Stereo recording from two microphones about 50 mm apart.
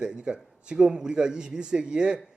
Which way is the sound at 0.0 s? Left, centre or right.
Centre.